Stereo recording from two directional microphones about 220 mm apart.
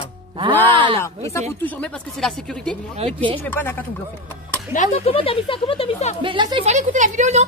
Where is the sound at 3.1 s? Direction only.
25° right (ahead or behind).